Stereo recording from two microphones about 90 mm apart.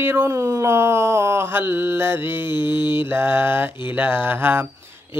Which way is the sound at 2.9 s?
25° right (ahead or behind).